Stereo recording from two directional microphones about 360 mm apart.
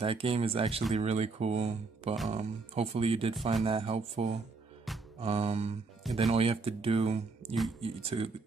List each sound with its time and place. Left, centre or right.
0.0 s speech: centre
4.9 s music: centre
5.2 s speech: centre